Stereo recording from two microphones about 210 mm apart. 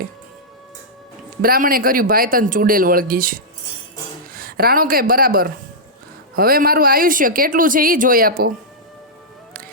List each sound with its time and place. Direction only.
1.4 s speech: 45° right (ahead or behind)